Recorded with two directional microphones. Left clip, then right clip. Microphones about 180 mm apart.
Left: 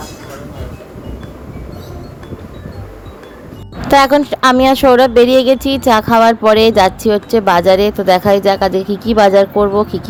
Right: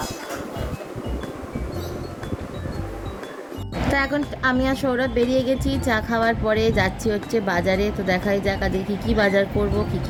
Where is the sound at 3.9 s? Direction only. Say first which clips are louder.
Left 16 dB; 45° left (ahead or behind).